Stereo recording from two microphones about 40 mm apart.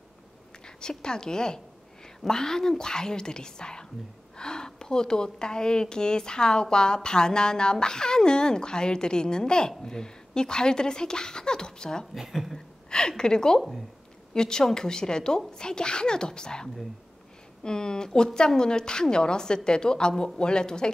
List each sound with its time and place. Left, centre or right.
0.7 s a woman's voice: centre
12.1 s a woman's voice: centre
12.9 s a woman's voice: centre
13.6 s a woman's voice: centre
14.3 s a woman's voice: centre